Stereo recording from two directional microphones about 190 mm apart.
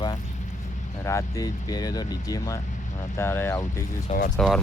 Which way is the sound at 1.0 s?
15° left (ahead or behind).